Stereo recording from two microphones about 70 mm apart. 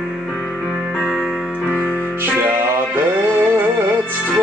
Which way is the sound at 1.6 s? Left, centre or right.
Centre.